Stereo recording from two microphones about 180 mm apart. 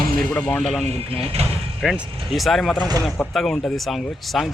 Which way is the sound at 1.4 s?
35° right (ahead or behind).